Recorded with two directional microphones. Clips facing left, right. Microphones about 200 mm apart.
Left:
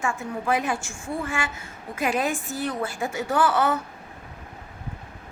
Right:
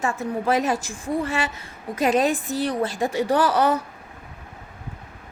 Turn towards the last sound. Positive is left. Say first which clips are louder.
# right 3 dB
turn(degrees=-40)  # may be behind; listen again after turning